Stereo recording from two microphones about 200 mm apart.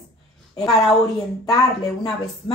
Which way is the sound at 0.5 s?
Centre (ahead or behind).